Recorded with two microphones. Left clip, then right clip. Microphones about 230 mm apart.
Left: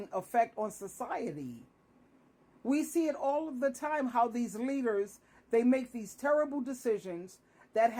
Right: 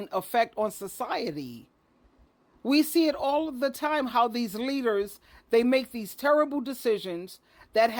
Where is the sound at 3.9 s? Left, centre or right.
Right.